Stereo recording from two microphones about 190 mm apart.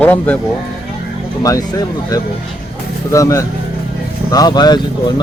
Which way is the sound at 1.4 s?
20° left (ahead or behind).